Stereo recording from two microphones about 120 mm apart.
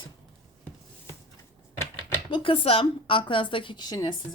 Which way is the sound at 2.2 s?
45° left (ahead or behind).